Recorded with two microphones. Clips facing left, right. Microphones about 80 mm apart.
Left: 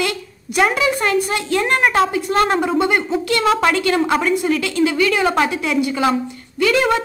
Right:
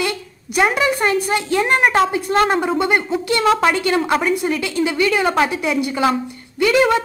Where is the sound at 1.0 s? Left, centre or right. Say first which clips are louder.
Even; centre.